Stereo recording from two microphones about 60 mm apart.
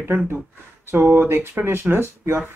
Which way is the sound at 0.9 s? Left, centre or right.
Right.